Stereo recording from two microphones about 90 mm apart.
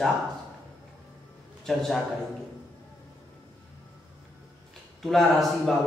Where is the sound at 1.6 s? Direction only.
Centre (ahead or behind).